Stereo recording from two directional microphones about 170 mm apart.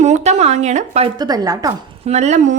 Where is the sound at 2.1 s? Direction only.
40° right (ahead or behind).